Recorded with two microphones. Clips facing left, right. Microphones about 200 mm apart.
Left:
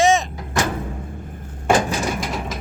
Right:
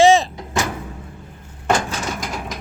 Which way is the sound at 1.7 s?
10° left (ahead or behind).